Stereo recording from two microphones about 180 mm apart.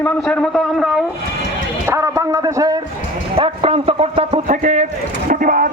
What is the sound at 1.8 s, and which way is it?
Speech, 15° right (ahead or behind).